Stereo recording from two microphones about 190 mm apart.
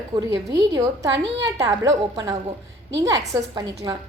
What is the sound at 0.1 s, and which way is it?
Speech, 20° right (ahead or behind).